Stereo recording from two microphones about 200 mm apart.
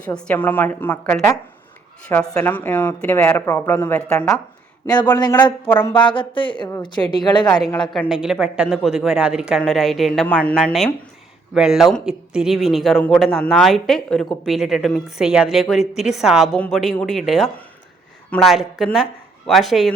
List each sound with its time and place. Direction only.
0.1 s a woman's voice: 5° left (ahead or behind)
5.9 s a woman's voice: 25° left (ahead or behind)
7.7 s speech: centre (ahead or behind)